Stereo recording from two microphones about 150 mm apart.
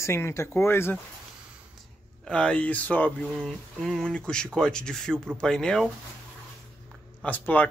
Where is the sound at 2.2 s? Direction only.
5° left (ahead or behind).